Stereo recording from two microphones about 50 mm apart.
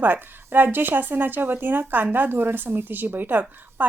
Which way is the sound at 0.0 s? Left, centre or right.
Right.